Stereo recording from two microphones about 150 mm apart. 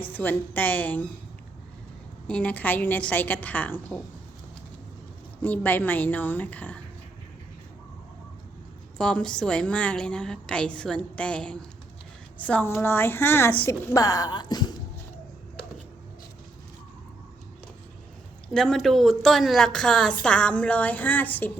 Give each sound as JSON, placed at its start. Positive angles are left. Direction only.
{"t": 0.0, "sound": "a woman's voice", "side_deg": 10}
{"t": 2.2, "sound": "a woman's voice", "side_deg": 10}
{"t": 5.4, "sound": "a woman's voice", "side_deg": 10}
{"t": 9.0, "sound": "a woman's voice", "side_deg": 5}
{"t": 18.4, "sound": "a woman's voice", "side_deg": 5}